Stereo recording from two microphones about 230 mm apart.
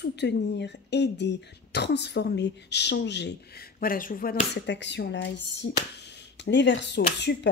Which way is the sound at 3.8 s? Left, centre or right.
Left.